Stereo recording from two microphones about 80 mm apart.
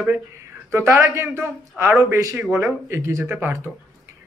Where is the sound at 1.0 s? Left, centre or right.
Right.